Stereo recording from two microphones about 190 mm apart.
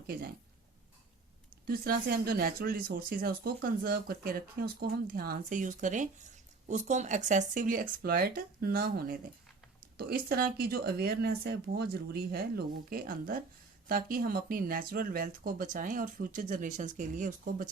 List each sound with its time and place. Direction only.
1.6 s speech: 50° right (ahead or behind)